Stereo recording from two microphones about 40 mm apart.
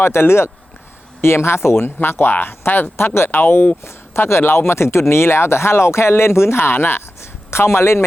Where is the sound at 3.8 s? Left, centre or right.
Left.